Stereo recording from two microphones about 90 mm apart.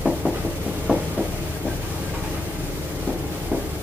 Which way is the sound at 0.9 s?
15° right (ahead or behind).